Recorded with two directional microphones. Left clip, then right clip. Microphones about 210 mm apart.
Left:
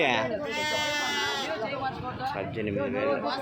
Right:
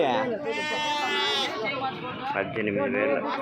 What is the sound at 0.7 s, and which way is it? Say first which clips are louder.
Speech: right 2 dB; 55° left (ahead or behind).